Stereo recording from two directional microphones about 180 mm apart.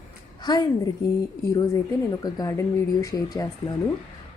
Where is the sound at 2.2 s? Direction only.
20° left (ahead or behind).